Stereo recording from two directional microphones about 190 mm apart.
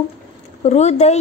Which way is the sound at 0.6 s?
35° left (ahead or behind).